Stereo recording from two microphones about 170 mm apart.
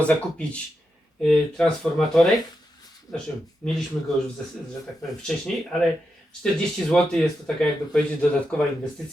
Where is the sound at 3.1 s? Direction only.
20° left (ahead or behind).